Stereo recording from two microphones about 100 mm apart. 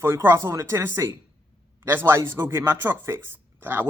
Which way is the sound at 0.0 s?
25° right (ahead or behind).